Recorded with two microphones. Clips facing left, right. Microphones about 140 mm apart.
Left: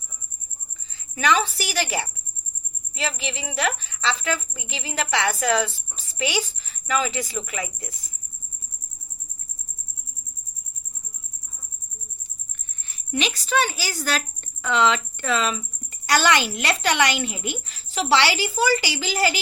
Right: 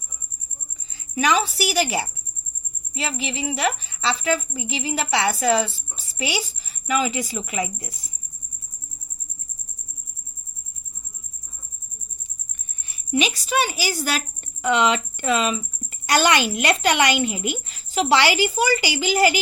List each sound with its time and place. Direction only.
0.9 s a woman's voice: 15° right (ahead or behind)
12.9 s a woman's voice: 10° right (ahead or behind)